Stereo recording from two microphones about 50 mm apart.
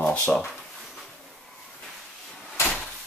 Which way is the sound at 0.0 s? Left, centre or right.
Left.